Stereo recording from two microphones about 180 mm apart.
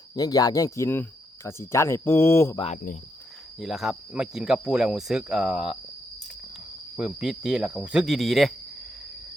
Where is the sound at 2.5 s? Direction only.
35° left (ahead or behind).